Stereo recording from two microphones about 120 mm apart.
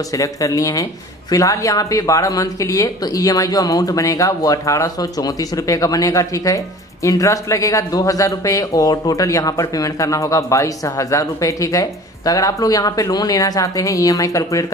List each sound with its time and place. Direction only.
0.1 s speech: 30° left (ahead or behind)